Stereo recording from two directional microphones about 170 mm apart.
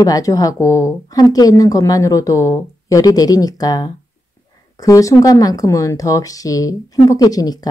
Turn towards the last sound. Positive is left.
turn(degrees=20)  # may be behind; listen again after turning